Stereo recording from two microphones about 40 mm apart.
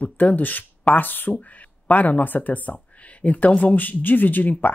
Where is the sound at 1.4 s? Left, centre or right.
Left.